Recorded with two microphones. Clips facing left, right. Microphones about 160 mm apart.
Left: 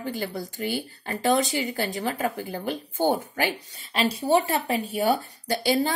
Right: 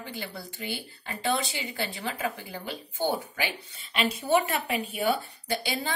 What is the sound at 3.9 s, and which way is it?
A woman's voice, 35° left (ahead or behind).